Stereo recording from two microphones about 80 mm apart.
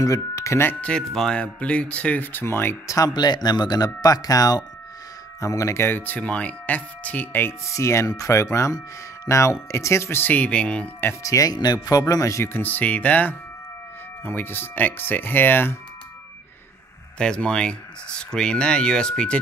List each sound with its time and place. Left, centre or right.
0.0 s speech: left
0.7 s speech: centre
3.1 s speech: left
5.9 s speech: left
7.7 s speech: left
10.3 s speech: centre
11.2 s speech: left
12.5 s speech: left
17.2 s speech: centre